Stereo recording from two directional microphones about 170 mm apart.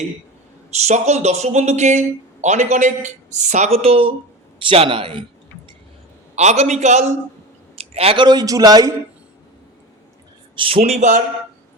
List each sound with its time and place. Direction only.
0.7 s a man's voice: 40° right (ahead or behind)
6.3 s a man's voice: 40° right (ahead or behind); by 9.0 s 20° right (ahead or behind)
10.5 s a man's voice: 35° right (ahead or behind)